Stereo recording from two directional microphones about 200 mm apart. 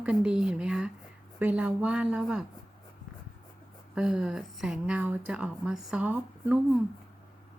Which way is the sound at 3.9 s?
5° right (ahead or behind).